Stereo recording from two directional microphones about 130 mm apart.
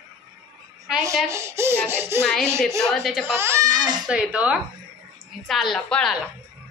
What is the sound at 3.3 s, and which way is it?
Speech, 20° right (ahead or behind).